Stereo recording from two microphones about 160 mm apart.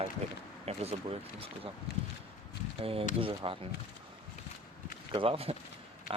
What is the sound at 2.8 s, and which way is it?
Speech, 35° right (ahead or behind).